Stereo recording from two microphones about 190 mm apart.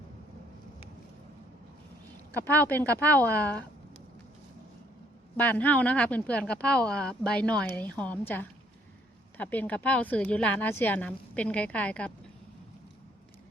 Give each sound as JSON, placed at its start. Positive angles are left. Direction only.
{"t": 2.3, "sound": "speech", "side_deg": 10}
{"t": 5.4, "sound": "speech", "side_deg": 10}